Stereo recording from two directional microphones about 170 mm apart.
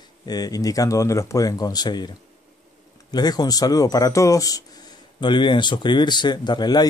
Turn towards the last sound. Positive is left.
turn(degrees=25)  # may be behind; listen again after turning